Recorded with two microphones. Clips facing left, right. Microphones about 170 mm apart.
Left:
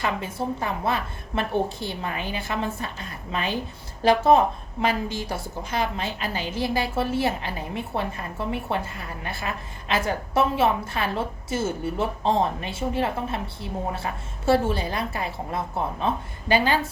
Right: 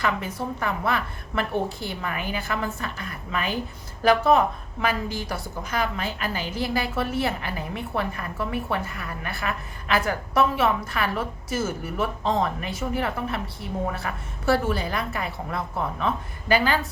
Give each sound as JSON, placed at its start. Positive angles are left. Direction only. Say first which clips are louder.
{"t": 0.0, "sound": "a woman's voice", "louder": "even", "side_deg": 25}